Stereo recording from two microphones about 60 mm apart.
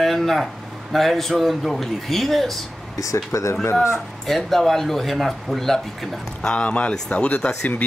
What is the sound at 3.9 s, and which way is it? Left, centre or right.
Speech, centre.